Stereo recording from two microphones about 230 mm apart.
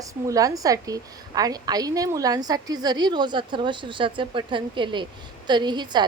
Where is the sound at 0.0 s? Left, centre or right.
Centre.